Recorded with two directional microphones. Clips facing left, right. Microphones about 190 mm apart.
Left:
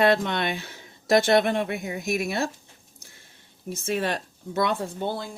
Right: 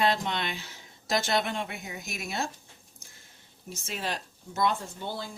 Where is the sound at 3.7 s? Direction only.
55° left (ahead or behind).